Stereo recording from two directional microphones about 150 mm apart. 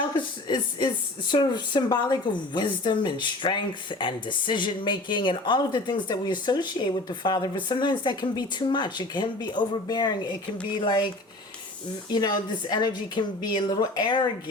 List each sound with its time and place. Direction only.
0.2 s a woman's voice: 30° left (ahead or behind)
12.1 s a woman's voice: 25° left (ahead or behind)